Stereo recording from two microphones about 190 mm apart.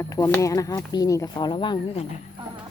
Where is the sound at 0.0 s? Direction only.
15° left (ahead or behind).